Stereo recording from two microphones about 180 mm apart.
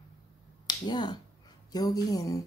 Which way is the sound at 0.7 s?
25° left (ahead or behind).